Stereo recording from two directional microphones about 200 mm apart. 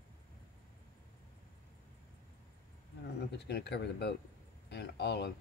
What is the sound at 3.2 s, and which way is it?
Speech, 55° left (ahead or behind).